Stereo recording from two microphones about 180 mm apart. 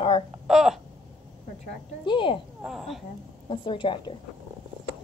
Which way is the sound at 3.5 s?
30° left (ahead or behind).